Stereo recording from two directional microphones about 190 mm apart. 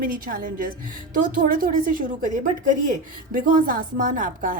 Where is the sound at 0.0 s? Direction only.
50° right (ahead or behind).